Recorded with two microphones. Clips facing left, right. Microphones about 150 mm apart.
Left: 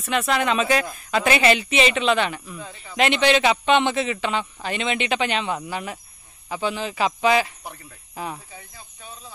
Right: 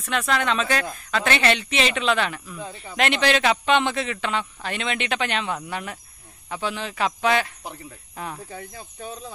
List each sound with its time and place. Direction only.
0.0 s a man's voice: centre (ahead or behind)
2.6 s speech: 30° right (ahead or behind)
3.0 s a man's voice: centre (ahead or behind)
8.5 s speech: 55° right (ahead or behind)